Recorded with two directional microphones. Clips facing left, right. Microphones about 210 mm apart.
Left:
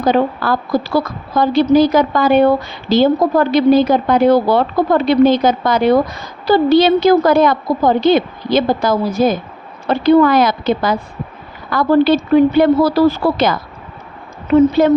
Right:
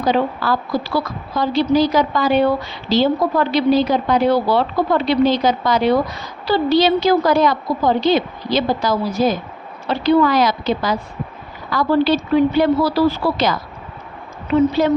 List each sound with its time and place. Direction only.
0.0 s a woman's voice: 50° left (ahead or behind)